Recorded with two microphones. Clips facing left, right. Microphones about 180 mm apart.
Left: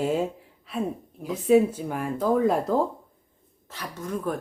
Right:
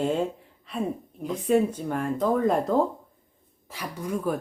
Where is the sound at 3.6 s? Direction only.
10° right (ahead or behind).